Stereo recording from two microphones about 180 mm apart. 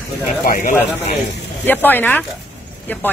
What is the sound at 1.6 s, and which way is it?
Speech, 10° left (ahead or behind).